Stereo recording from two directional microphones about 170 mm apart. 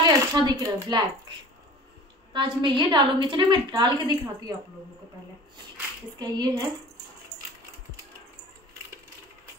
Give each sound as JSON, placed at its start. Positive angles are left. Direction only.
{"t": 0.0, "sound": "speech", "side_deg": -25}
{"t": 2.3, "sound": "a woman's voice", "side_deg": -30}
{"t": 6.1, "sound": "a woman's voice", "side_deg": -25}